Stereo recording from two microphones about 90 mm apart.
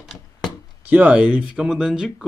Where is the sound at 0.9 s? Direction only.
15° right (ahead or behind).